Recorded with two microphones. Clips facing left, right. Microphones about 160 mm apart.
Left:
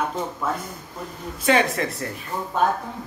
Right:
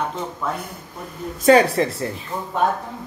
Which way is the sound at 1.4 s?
35° right (ahead or behind).